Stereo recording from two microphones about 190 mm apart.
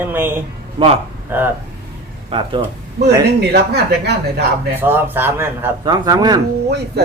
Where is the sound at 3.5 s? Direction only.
60° right (ahead or behind).